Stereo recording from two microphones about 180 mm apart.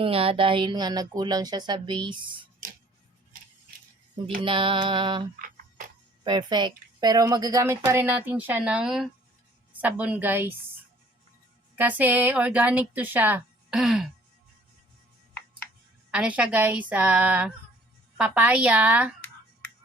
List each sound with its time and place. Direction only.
0.0 s speech: 30° right (ahead or behind)
4.4 s speech: 30° right (ahead or behind)
6.2 s a woman's voice: 25° right (ahead or behind)
11.8 s a woman's voice: 10° right (ahead or behind)
16.1 s a woman's voice: 5° right (ahead or behind)